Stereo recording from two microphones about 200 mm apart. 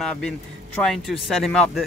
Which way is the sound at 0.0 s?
5° left (ahead or behind).